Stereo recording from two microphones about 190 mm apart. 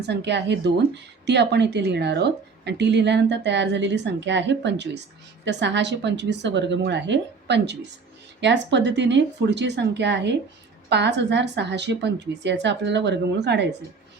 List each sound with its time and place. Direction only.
0.1 s a woman's voice: 65° right (ahead or behind)